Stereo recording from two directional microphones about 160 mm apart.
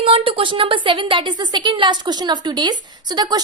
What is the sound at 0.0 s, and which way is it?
A woman's voice, 35° right (ahead or behind).